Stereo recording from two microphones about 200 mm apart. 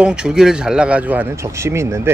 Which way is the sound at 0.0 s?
5° right (ahead or behind).